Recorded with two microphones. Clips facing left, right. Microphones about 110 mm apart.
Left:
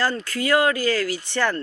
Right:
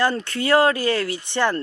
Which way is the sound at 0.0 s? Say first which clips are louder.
Right 2 dB; 25° right (ahead or behind).